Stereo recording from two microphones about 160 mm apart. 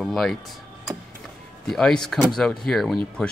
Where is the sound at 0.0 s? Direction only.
Centre (ahead or behind).